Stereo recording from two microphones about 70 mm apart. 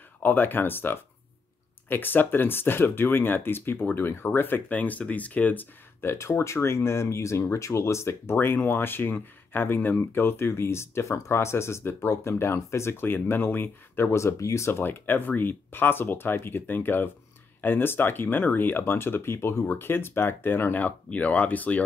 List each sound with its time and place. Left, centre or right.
0.2 s speech: left
14.1 s speech: left
14.8 s speech: left